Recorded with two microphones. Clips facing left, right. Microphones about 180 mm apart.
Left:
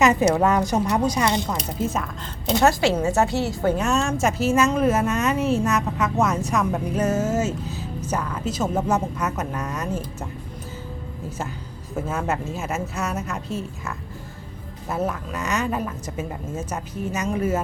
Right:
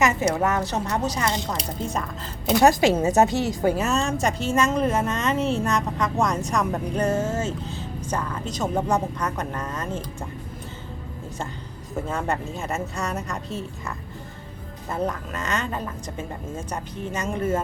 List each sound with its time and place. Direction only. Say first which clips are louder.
0.0 s a sound: left 4 dB; 20° left (ahead or behind)
0.4 s a woman's voice: left 4 dB; 15° left (ahead or behind)
2.6 s speech: right 2 dB; 15° right (ahead or behind)
3.8 s speech: left 2 dB; centre (ahead or behind)
11.9 s a woman's voice: left 1 dB; 5° left (ahead or behind)